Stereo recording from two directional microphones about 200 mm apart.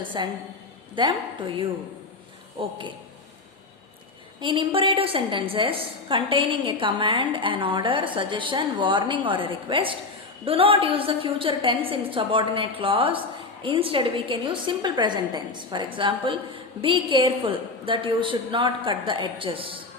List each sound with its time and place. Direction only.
0.1 s a woman's voice: 25° right (ahead or behind)
2.6 s a woman's voice: 25° right (ahead or behind)
4.4 s a woman's voice: 25° right (ahead or behind)